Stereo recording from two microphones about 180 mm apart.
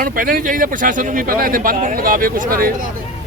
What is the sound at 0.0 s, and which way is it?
A man's voice, 50° right (ahead or behind).